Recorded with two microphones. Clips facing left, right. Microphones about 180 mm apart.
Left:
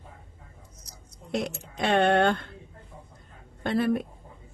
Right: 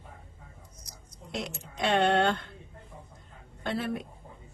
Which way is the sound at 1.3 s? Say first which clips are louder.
Left 6 dB; 55° left (ahead or behind).